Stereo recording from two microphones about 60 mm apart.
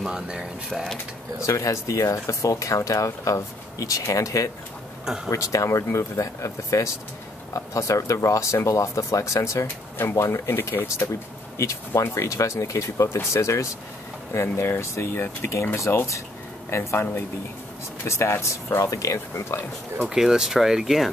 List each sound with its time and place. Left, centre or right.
0.1 s speech: centre
1.4 s speech: left
5.0 s speech: centre
5.3 s speech: left
11.5 s speech: left
11.9 s speech: left
15.9 s speech: left
20.0 s speech: centre